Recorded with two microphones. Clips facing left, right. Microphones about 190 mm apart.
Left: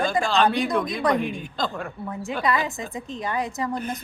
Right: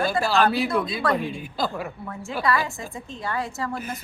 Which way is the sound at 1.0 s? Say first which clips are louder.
Left 2 dB; 15° left (ahead or behind).